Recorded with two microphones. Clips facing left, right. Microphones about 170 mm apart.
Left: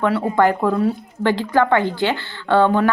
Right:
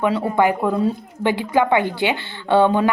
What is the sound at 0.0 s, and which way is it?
Speech, 15° right (ahead or behind).